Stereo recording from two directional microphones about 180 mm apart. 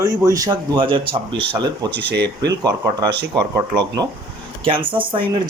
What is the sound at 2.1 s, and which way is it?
Speech, 70° right (ahead or behind).